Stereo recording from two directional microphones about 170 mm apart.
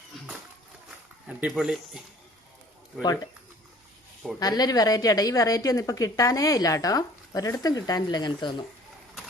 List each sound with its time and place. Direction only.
1.3 s speech: 5° right (ahead or behind)
4.4 s a woman's voice: 25° left (ahead or behind)